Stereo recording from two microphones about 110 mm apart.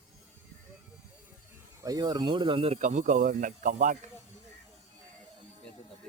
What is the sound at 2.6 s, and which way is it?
Speech, 80° right.